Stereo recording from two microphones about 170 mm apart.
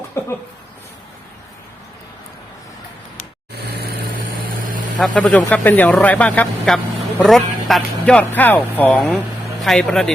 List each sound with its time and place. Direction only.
0.2 s speech: 15° left (ahead or behind)
4.9 s speech: 5° left (ahead or behind)